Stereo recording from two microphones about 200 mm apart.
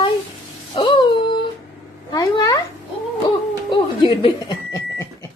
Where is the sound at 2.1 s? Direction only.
20° left (ahead or behind).